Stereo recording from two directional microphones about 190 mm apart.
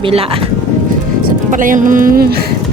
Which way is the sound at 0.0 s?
30° right (ahead or behind).